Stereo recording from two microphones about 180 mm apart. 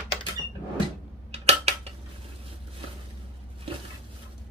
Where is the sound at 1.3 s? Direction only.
35° right (ahead or behind).